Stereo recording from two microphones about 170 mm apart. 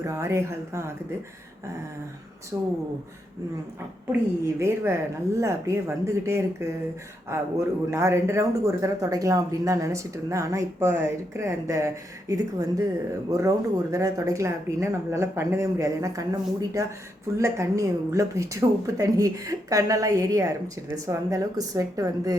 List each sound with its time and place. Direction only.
0.0 s speech: 15° right (ahead or behind)
2.5 s a woman's voice: 20° right (ahead or behind)
4.6 s a woman's voice: 15° right (ahead or behind)